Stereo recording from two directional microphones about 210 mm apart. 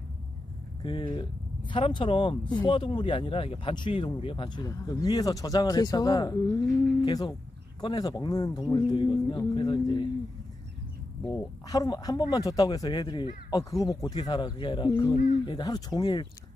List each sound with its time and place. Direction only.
0.8 s speech: 25° left (ahead or behind)
11.3 s speech: 15° left (ahead or behind)